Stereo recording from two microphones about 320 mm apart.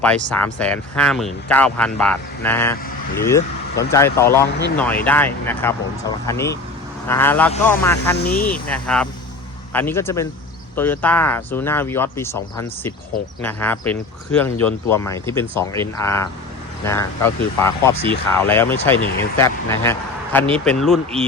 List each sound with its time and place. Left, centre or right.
0.0 s speech: centre
8.2 s speech: left
8.6 s speech: centre
17.9 s speech: centre
18.3 s speech: centre